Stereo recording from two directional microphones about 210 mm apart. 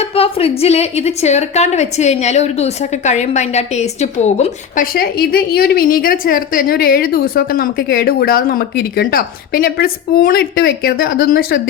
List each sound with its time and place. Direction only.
0.0 s a woman's voice: 30° left (ahead or behind)
4.9 s a woman's voice: 45° left (ahead or behind)